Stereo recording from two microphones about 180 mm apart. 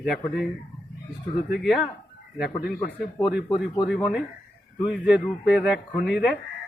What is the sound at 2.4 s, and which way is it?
Speech, 60° left (ahead or behind).